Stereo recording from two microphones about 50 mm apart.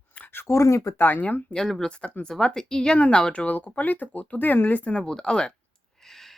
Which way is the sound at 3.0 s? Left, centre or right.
Left.